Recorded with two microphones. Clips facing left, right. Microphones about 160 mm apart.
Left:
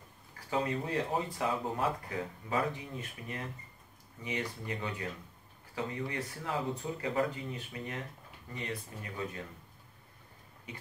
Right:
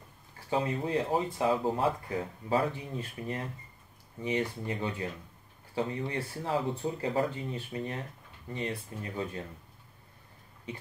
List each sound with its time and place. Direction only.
0.5 s speech: 25° right (ahead or behind)